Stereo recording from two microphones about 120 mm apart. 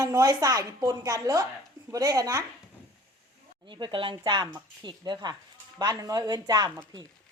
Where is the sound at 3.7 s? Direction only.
40° right (ahead or behind).